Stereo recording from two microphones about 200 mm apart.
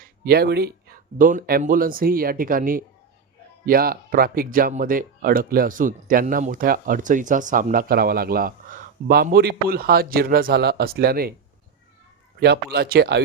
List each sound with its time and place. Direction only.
0.3 s speech: 50° right (ahead or behind)
1.2 s speech: 40° right (ahead or behind)
12.7 s speech: 50° right (ahead or behind)